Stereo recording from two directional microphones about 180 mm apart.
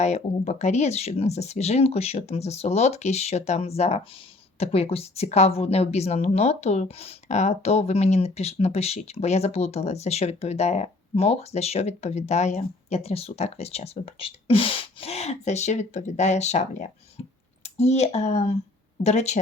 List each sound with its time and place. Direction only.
0.0 s speech: 40° left (ahead or behind)
17.2 s clicking: 40° left (ahead or behind)
17.6 s speech: 40° left (ahead or behind)